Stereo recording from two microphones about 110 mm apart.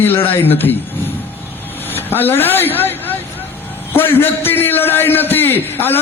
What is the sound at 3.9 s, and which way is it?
A man's voice, 20° left (ahead or behind).